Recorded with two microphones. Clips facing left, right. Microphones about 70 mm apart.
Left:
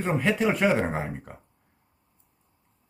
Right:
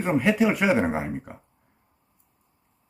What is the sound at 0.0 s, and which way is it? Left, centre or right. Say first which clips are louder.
Speech: right 3 dB; centre.